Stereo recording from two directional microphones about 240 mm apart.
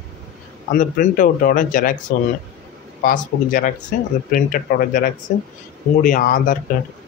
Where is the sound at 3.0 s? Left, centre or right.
Left.